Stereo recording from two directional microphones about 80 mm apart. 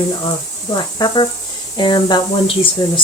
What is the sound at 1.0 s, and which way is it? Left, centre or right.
Speech, left.